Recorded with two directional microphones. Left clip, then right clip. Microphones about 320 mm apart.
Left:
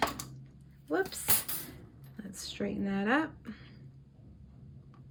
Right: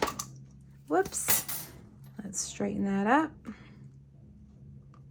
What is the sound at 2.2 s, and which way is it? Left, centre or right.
Speech, centre.